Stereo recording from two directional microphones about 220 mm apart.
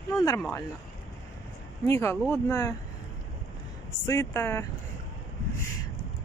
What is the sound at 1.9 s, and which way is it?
Speech, 10° left (ahead or behind).